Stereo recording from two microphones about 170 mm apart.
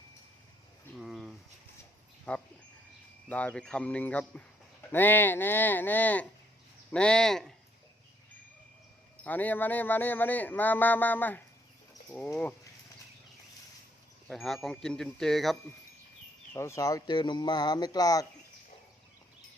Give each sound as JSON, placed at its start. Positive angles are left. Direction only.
{"t": 0.9, "sound": "a sound", "side_deg": 0}
{"t": 2.3, "sound": "speech", "side_deg": 10}
{"t": 9.2, "sound": "speech", "side_deg": 10}
{"t": 14.3, "sound": "speech", "side_deg": 0}
{"t": 16.6, "sound": "speech", "side_deg": 15}